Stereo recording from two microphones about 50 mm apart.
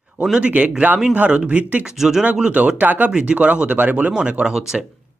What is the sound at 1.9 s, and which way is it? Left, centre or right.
Speech, centre.